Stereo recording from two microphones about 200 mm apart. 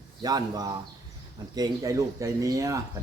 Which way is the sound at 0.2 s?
20° right (ahead or behind).